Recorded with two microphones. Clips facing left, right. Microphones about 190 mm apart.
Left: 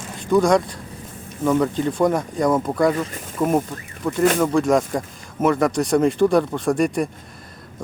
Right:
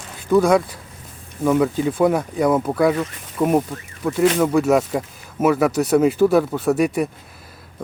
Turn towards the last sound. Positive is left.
turn(degrees=-5)  # may be behind; listen again after turning